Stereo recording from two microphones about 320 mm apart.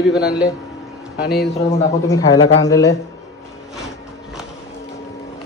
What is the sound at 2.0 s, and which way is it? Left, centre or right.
Speech, centre.